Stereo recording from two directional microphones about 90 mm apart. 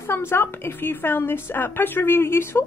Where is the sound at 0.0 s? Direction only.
25° left (ahead or behind).